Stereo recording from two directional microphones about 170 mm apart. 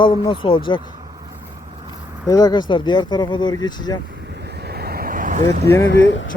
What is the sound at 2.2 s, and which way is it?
Speech, 25° left (ahead or behind).